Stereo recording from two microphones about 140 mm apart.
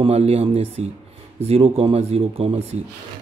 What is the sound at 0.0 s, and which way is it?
A man's voice, 50° right (ahead or behind).